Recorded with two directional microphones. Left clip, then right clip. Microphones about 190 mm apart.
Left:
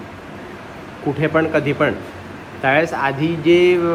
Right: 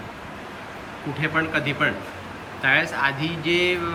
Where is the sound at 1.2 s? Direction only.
15° right (ahead or behind).